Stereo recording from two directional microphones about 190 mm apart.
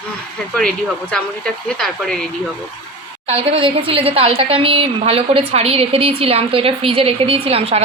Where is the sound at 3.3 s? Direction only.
30° right (ahead or behind).